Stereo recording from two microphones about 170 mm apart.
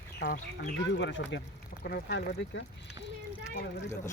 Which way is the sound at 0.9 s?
90° left.